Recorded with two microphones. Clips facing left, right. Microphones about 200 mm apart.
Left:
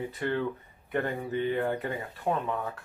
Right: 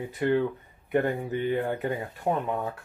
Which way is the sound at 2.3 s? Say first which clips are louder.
Right 2 dB; 10° right (ahead or behind).